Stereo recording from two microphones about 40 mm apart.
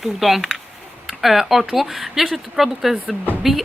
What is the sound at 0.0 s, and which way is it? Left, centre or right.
Speech, centre.